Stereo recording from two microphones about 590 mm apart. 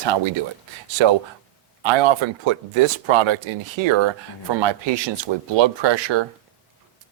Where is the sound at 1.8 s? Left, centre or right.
Right.